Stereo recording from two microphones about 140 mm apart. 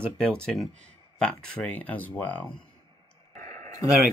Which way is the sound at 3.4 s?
60° right (ahead or behind).